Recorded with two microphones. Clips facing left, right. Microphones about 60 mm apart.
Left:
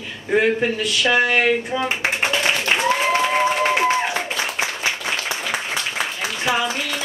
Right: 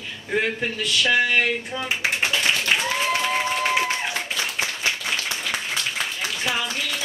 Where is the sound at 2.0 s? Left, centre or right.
Centre.